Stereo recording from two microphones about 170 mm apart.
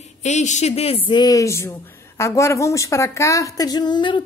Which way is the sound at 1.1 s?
25° left (ahead or behind).